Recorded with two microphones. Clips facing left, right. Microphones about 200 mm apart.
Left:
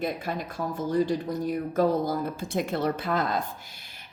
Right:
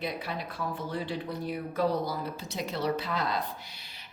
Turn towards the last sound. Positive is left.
turn(degrees=50)  # may be behind; listen again after turning